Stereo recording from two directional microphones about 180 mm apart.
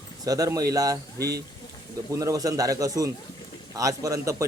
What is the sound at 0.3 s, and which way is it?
A man's voice, 20° right (ahead or behind).